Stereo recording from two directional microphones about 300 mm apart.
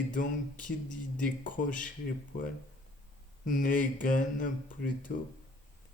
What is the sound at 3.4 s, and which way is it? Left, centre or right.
Speech, left.